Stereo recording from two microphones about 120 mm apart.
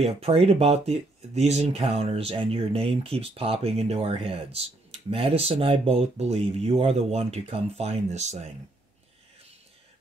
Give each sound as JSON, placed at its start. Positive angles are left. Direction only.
{"t": 0.0, "sound": "speech", "side_deg": -55}